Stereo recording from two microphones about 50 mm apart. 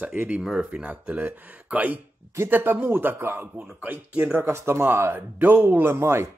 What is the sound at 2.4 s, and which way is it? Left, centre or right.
Speech, right.